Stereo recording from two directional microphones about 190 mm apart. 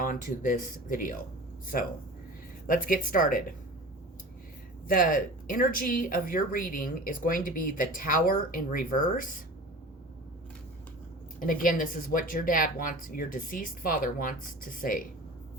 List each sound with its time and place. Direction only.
0.0 s speech: 45° left (ahead or behind)
2.6 s speech: 45° left (ahead or behind)
4.9 s speech: 45° left (ahead or behind)
11.3 s speech: 45° left (ahead or behind)